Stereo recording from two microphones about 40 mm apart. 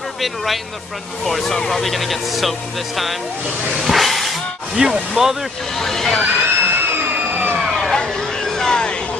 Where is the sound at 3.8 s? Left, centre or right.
Centre.